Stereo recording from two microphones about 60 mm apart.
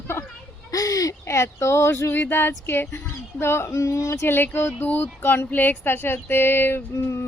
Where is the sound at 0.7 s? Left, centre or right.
Left.